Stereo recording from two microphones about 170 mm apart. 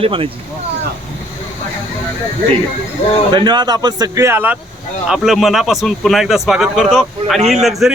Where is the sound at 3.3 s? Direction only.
25° right (ahead or behind).